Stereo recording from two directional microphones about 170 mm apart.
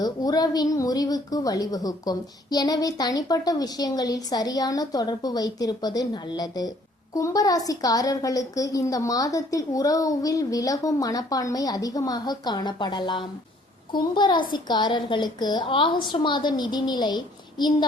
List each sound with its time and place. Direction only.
0.0 s a woman's voice: 20° left (ahead or behind)